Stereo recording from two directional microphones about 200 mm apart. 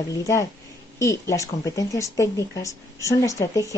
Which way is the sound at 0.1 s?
15° left (ahead or behind).